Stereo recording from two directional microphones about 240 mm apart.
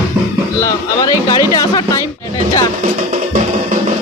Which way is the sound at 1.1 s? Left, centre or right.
Centre.